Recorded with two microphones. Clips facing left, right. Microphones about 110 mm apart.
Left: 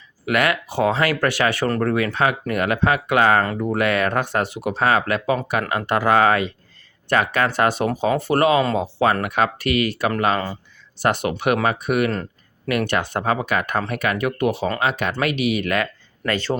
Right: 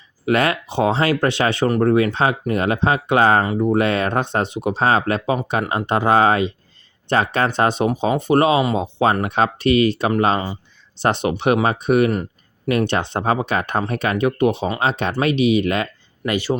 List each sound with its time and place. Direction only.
0.3 s speech: 30° right (ahead or behind)
12.1 s a sound: 15° right (ahead or behind)
12.7 s speech: 25° right (ahead or behind)